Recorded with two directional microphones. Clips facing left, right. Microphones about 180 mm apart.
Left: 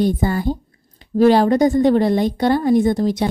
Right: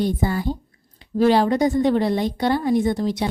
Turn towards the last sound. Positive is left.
turn(degrees=45)  # may be behind; listen again after turning